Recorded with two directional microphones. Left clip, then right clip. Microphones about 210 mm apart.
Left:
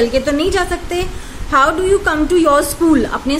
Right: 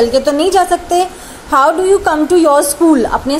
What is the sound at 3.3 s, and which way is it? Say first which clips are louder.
Speech: right 3 dB; 25° left (ahead or behind).